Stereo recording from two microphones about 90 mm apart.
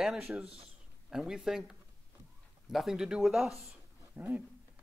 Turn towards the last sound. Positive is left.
turn(degrees=-15)  # may be behind; listen again after turning